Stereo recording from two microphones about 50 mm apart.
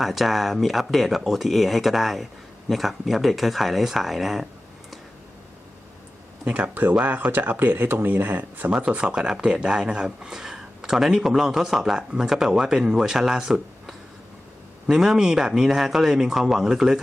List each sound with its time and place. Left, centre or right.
0.0 s speech: centre
6.4 s speech: right
8.8 s speech: right